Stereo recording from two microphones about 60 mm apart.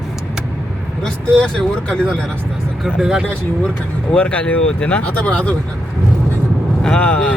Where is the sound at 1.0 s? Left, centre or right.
Centre.